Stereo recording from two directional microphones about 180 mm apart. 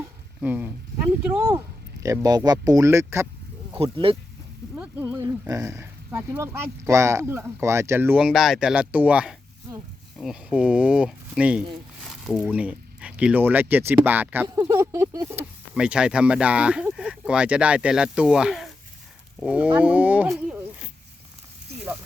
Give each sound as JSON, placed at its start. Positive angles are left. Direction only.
{"t": 0.0, "sound": "a sound", "side_deg": -10}
{"t": 1.4, "sound": "speech", "side_deg": -15}
{"t": 3.9, "sound": "speech", "side_deg": -30}
{"t": 5.1, "sound": "speech", "side_deg": -20}